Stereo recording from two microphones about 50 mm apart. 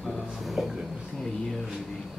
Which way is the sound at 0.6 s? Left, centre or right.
Centre.